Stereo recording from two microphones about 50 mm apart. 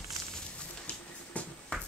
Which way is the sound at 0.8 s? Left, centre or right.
Left.